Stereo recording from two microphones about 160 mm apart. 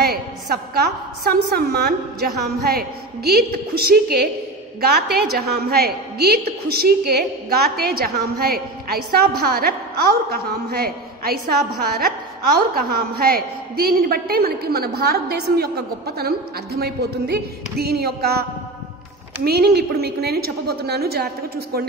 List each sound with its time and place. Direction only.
0.7 s a woman's voice: 75° right (ahead or behind)
19.4 s a woman's voice: 75° right (ahead or behind)